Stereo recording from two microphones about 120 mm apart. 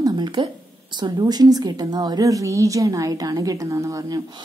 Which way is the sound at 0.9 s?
35° right (ahead or behind).